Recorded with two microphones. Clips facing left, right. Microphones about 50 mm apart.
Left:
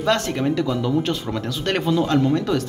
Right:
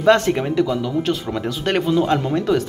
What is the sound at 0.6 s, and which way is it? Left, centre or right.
Speech, centre.